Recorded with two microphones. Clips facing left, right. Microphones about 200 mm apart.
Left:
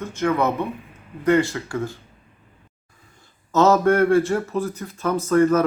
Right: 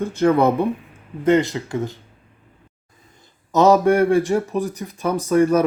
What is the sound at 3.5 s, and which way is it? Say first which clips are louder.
A man's voice: right 2 dB; 15° right (ahead or behind).